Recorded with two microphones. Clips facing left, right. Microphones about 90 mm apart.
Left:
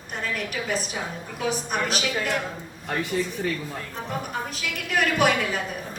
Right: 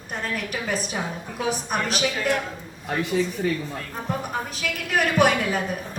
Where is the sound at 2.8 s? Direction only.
5° right (ahead or behind).